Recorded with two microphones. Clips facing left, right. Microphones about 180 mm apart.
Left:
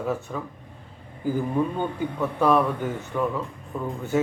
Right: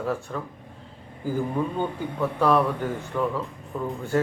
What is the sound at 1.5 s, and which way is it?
Speech, centre (ahead or behind).